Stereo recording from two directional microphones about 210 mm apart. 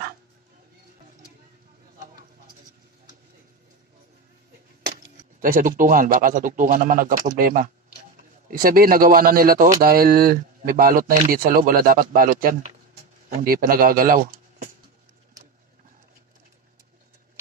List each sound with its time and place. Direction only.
5.4 s speech: 40° right (ahead or behind)